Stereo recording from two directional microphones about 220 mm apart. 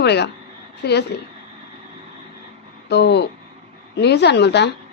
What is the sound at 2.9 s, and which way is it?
A woman's voice, 50° left (ahead or behind).